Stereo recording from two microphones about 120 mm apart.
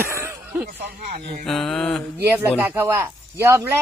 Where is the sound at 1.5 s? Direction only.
5° left (ahead or behind).